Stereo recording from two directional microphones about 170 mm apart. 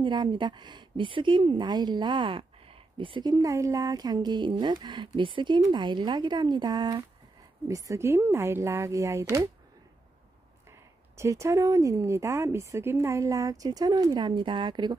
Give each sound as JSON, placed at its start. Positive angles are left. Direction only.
{"t": 0.0, "sound": "a woman's voice", "side_deg": -25}
{"t": 11.1, "sound": "a woman's voice", "side_deg": -15}